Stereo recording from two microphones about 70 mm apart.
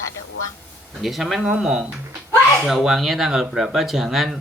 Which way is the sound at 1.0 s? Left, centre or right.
Centre.